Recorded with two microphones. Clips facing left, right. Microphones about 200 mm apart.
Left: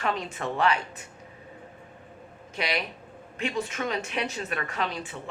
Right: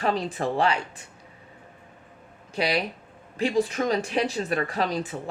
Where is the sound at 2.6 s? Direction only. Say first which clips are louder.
Right 5 dB; 35° right (ahead or behind).